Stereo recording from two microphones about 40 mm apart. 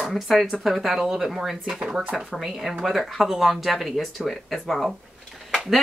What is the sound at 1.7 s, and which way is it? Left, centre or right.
Speech, centre.